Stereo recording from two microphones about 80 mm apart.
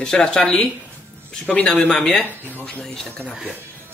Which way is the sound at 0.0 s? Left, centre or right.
Centre.